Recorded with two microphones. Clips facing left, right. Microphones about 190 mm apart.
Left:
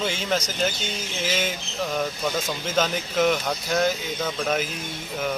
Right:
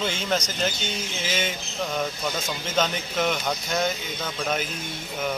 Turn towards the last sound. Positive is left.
turn(degrees=0)  # may be behind; listen again after turning